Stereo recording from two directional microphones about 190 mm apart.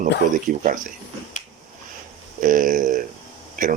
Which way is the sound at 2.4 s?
45° right (ahead or behind).